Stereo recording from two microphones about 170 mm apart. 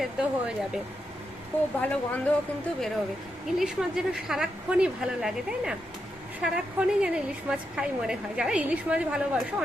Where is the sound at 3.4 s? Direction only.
5° right (ahead or behind).